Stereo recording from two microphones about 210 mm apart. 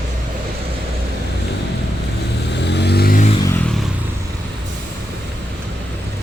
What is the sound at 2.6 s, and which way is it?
Vehicle, 55° left (ahead or behind).